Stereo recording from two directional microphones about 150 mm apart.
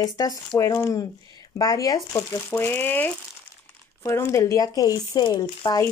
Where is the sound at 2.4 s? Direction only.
10° left (ahead or behind); by 5.8 s 30° left (ahead or behind).